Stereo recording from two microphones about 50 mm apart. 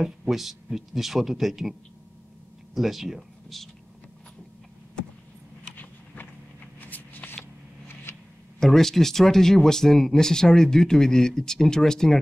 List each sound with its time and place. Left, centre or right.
0.0 s speech: centre
6.8 s shuffling cards: left
7.9 s a sound: left
8.5 s speech: centre